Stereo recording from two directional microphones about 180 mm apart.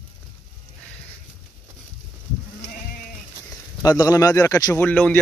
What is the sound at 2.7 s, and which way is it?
Sheep, 50° left (ahead or behind).